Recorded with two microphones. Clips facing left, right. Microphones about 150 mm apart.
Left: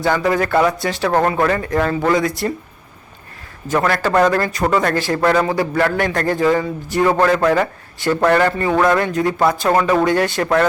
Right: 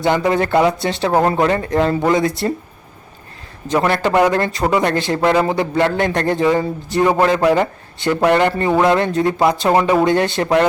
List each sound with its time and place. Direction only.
0.0 s a man's voice: 20° right (ahead or behind)
3.7 s a man's voice: 20° right (ahead or behind)